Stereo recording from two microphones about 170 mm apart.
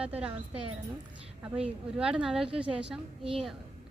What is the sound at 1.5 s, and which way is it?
A woman's voice, 5° right (ahead or behind).